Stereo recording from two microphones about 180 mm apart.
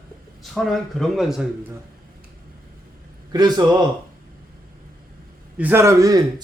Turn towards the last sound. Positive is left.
turn(degrees=-20)  # may be behind; listen again after turning